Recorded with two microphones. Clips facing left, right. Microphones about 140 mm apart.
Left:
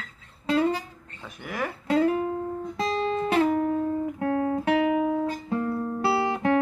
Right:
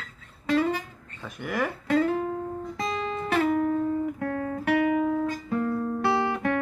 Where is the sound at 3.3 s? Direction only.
30° left (ahead or behind).